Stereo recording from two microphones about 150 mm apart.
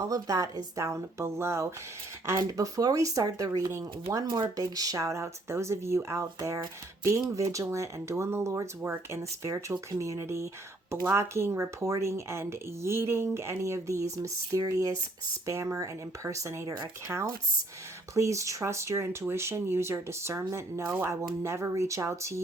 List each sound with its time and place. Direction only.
0.0 s speech: 20° right (ahead or behind)